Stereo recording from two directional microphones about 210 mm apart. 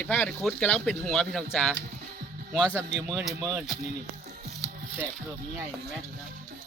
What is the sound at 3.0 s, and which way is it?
Speech, 10° right (ahead or behind).